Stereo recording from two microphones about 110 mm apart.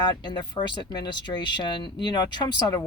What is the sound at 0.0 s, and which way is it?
Speech, 40° left (ahead or behind).